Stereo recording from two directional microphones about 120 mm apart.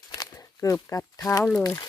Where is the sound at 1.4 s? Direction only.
5° left (ahead or behind).